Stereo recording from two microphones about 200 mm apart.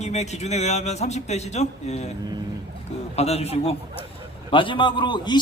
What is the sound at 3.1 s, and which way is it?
A man's voice, 30° left (ahead or behind).